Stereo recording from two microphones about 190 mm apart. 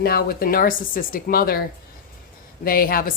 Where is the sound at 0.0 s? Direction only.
55° left (ahead or behind).